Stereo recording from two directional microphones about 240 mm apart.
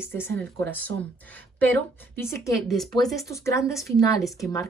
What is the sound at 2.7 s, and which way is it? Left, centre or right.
Speech, centre.